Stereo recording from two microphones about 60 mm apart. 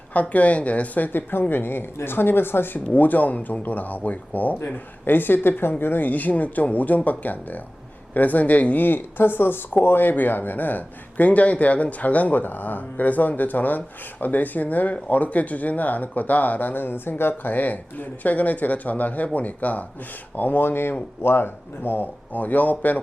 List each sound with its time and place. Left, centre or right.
0.1 s speech: left